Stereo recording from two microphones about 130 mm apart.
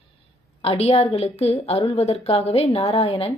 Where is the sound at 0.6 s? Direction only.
50° left (ahead or behind).